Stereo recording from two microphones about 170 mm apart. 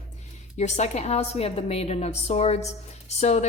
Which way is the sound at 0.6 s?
40° left (ahead or behind).